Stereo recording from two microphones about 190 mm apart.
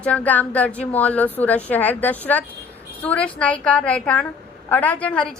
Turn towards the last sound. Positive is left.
turn(degrees=5)  # may be behind; listen again after turning